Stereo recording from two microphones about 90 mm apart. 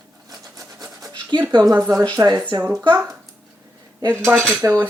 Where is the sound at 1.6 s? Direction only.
40° right (ahead or behind).